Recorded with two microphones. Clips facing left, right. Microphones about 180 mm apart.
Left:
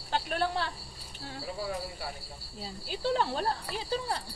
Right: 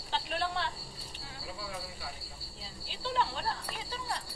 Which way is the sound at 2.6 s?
45° left (ahead or behind).